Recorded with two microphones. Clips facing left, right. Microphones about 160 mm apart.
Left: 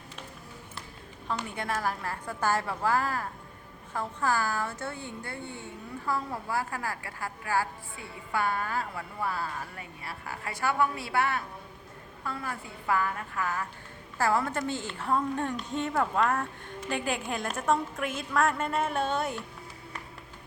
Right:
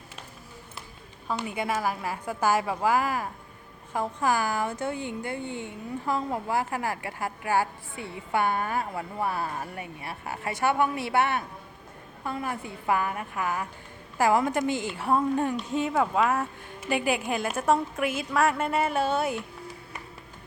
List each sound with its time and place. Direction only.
1.3 s a woman's voice: 10° right (ahead or behind)